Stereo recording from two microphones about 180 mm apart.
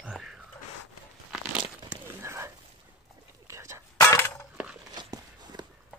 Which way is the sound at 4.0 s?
15° left (ahead or behind).